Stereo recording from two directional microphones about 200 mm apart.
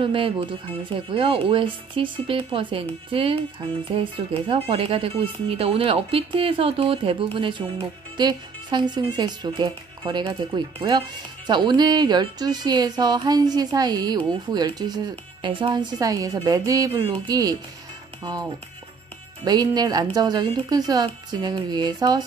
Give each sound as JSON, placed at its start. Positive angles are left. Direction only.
{"t": 0.0, "sound": "speech", "side_deg": -25}